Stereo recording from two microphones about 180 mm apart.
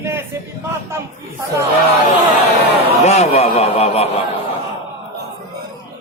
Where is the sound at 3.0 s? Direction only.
35° left (ahead or behind).